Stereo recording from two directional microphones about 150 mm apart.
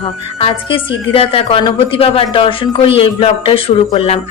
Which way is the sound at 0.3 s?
40° left (ahead or behind).